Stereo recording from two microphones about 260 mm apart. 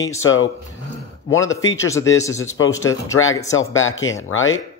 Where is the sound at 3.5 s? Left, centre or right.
Left.